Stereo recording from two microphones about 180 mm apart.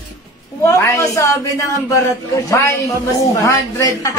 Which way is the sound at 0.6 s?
15° left (ahead or behind).